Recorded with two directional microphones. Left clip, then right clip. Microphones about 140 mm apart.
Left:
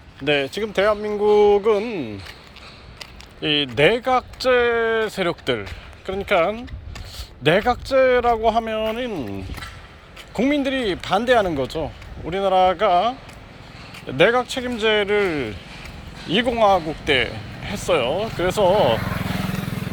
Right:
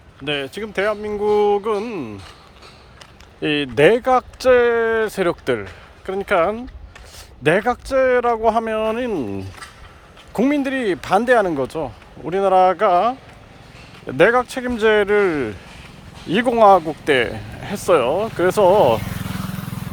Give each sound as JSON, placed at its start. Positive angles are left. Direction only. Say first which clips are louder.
{"t": 0.3, "sound": "speech", "louder": "left 3 dB", "side_deg": -20}
{"t": 3.4, "sound": "speech", "louder": "right 2 dB", "side_deg": -45}